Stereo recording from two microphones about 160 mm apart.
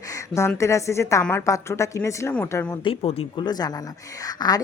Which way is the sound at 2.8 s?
35° left (ahead or behind).